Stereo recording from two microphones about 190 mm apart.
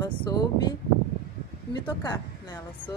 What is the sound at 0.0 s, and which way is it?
A woman's voice, 20° left (ahead or behind).